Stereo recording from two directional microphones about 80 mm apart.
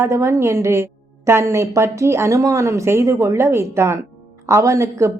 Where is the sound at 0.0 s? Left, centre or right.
Right.